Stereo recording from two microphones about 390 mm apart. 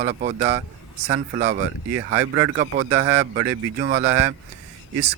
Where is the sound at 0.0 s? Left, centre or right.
Centre.